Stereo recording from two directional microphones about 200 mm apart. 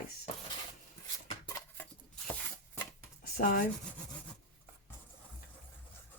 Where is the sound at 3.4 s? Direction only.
50° left (ahead or behind).